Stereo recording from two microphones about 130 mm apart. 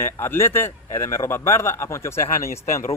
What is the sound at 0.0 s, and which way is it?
A man's voice, 20° left (ahead or behind).